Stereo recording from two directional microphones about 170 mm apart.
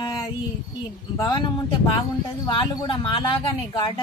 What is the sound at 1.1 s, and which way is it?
Speech, 20° left (ahead or behind).